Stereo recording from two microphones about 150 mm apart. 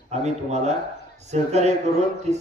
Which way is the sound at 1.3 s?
45° right (ahead or behind).